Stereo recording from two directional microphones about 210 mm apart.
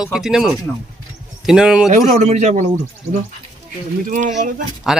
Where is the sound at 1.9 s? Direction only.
35° right (ahead or behind).